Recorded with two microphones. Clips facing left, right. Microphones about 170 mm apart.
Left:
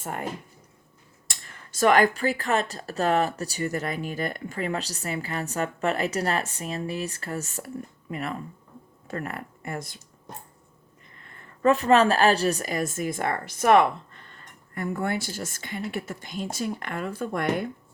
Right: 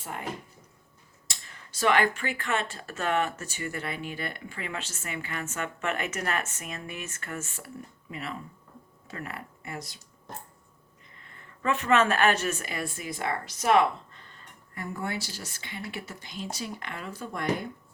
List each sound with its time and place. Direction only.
0.0 s speech: 50° left (ahead or behind)
1.3 s speech: 50° left (ahead or behind)
8.1 s speech: 50° left (ahead or behind)
11.6 s speech: 35° left (ahead or behind); by 17.4 s 55° left (ahead or behind)